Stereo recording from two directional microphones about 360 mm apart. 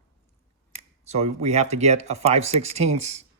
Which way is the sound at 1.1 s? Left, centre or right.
Centre.